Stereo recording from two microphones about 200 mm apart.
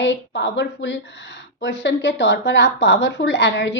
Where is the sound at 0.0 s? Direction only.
60° left (ahead or behind).